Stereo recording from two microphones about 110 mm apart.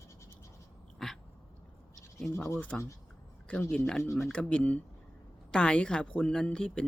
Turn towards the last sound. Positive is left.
turn(degrees=10)  # may be behind; listen again after turning